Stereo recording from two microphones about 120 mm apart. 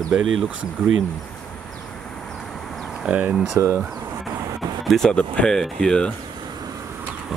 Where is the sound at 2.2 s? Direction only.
5° left (ahead or behind).